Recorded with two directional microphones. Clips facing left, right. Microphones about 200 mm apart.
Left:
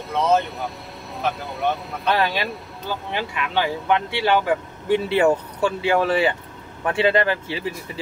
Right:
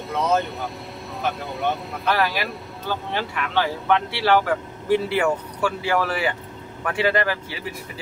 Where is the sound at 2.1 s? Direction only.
25° left (ahead or behind).